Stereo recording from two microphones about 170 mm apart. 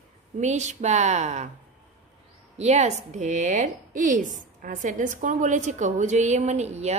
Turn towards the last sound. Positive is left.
turn(degrees=-40)  # may be behind; listen again after turning